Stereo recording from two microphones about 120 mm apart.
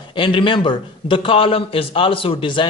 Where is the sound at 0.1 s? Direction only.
45° left (ahead or behind).